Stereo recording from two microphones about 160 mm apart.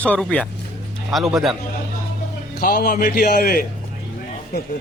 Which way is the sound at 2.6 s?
75° left (ahead or behind).